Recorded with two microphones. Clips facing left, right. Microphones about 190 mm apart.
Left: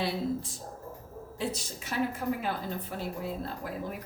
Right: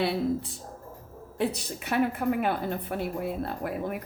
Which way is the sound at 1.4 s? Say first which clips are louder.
Right 6 dB; 60° right (ahead or behind).